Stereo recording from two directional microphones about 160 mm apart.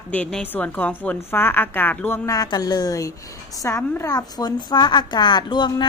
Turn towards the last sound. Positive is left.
turn(degrees=30)  # may be behind; listen again after turning